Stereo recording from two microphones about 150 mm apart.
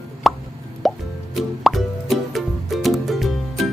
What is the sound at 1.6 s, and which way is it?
Plop, centre (ahead or behind).